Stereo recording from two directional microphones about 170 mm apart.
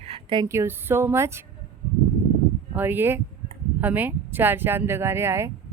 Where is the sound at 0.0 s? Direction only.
30° right (ahead or behind).